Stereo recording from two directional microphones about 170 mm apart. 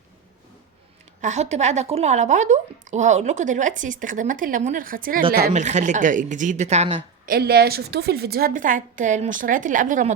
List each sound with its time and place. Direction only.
1.2 s a woman's voice: 40° right (ahead or behind)
5.5 s a woman's voice: 45° right (ahead or behind)
7.3 s a woman's voice: 65° right (ahead or behind); by 10.1 s 50° right (ahead or behind)